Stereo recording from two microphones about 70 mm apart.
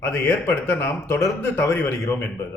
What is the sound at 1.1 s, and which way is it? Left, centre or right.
Speech, left.